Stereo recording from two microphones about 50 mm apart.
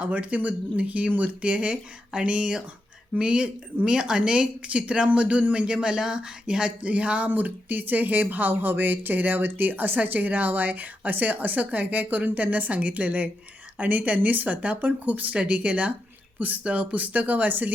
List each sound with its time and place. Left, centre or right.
0.0 s speech: right